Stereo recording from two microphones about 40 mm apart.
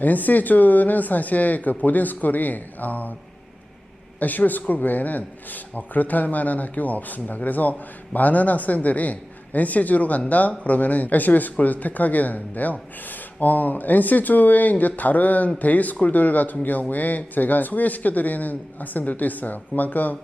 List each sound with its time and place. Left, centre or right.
0.0 s speech: left
4.2 s speech: left